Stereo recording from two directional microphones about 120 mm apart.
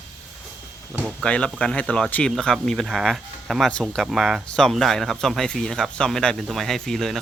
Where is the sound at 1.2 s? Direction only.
10° left (ahead or behind).